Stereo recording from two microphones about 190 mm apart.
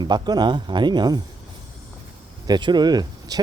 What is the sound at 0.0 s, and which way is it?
Speech, 20° right (ahead or behind).